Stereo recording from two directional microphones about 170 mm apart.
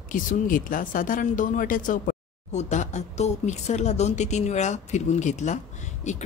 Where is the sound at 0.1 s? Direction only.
50° left (ahead or behind).